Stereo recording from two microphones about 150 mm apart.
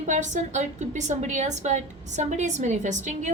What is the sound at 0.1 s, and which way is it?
A woman's voice, 55° right (ahead or behind).